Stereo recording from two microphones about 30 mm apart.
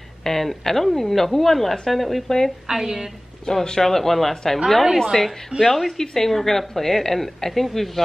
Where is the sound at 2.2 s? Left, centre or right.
Centre.